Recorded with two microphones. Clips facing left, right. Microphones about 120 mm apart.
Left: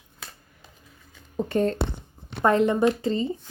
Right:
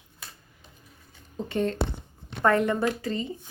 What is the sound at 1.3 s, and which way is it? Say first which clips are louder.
Speech: left 4 dB; 45° left (ahead or behind).